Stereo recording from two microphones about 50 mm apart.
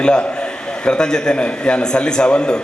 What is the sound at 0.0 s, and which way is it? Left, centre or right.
A man's voice, centre.